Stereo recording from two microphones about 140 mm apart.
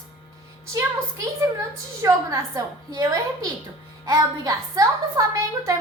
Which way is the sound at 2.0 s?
25° right (ahead or behind).